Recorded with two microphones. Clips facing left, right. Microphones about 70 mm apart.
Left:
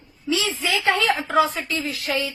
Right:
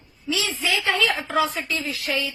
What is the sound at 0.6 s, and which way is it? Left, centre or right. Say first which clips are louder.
Speech: even; left.